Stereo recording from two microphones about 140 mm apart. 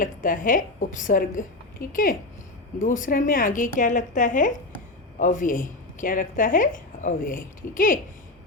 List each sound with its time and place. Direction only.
0.0 s a woman's voice: 75° left (ahead or behind)